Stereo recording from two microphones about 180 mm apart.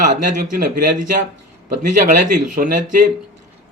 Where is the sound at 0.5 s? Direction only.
50° right (ahead or behind).